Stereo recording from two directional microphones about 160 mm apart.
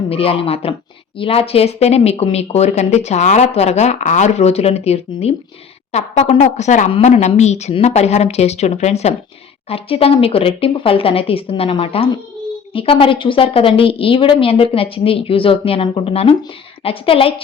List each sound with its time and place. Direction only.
0.1 s speech: 35° left (ahead or behind)